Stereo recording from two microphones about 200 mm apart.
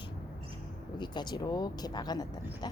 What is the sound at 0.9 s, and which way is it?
Speech, 20° left (ahead or behind).